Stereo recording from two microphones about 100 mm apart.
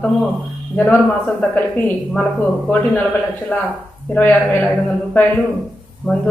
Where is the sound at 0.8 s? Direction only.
15° left (ahead or behind).